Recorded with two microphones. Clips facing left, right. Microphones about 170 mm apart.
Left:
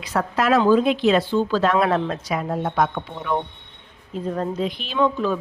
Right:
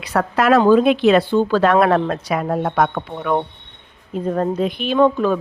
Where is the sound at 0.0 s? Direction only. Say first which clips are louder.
Right 4 dB; 65° right (ahead or behind).